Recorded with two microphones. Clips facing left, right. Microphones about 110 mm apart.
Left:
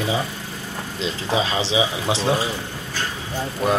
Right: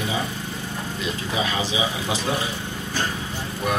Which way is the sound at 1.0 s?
25° left (ahead or behind).